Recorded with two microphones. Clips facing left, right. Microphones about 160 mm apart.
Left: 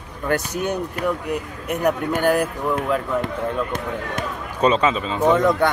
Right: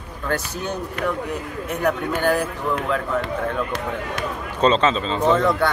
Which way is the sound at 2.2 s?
15° left (ahead or behind).